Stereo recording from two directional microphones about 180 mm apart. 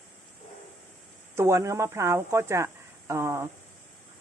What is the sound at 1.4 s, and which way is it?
Speech, 15° right (ahead or behind).